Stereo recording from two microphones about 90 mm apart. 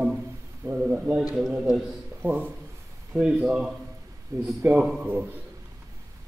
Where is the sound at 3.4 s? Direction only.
5° right (ahead or behind).